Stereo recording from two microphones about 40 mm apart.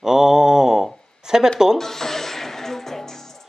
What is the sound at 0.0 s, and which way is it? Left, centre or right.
Mantra, centre.